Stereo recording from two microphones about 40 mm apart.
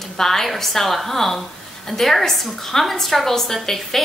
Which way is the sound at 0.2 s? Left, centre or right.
Centre.